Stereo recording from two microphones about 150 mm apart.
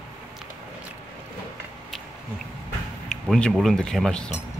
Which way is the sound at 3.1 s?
5° left (ahead or behind).